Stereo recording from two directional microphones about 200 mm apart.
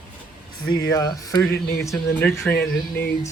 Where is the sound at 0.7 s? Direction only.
20° left (ahead or behind).